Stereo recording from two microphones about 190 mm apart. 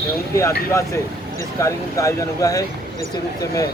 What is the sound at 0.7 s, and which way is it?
Speech, 15° left (ahead or behind).